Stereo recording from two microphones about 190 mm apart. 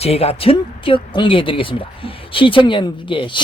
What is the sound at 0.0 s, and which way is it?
Speech, 30° left (ahead or behind).